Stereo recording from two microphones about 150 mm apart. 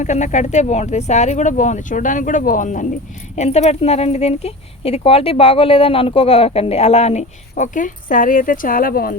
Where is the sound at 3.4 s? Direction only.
45° left (ahead or behind).